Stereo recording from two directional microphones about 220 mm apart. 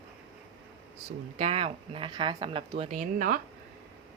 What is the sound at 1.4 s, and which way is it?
Speech, 25° right (ahead or behind).